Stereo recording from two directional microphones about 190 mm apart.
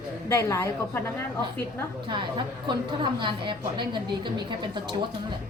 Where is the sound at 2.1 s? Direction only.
25° right (ahead or behind).